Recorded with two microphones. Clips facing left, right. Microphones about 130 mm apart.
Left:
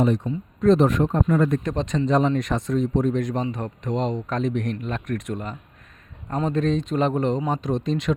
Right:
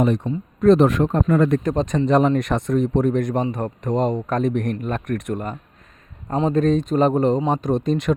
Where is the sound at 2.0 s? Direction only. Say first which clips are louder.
Right 3 dB; 60° right (ahead or behind); by 7.4 s 35° right (ahead or behind).